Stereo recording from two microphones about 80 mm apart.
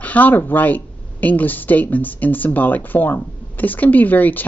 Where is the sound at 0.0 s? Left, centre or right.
Left.